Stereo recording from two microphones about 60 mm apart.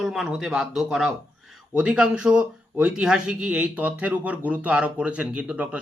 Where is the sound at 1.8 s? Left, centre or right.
Centre.